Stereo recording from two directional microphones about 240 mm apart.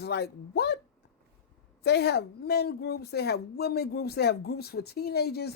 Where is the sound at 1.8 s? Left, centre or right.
Left.